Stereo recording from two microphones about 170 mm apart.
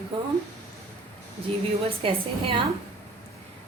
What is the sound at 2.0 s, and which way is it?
Speech, 35° right (ahead or behind).